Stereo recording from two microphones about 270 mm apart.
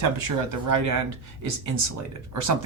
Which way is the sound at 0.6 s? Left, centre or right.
Right.